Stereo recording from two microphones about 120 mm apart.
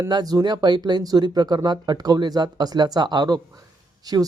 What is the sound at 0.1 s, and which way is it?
Speech, 35° right (ahead or behind).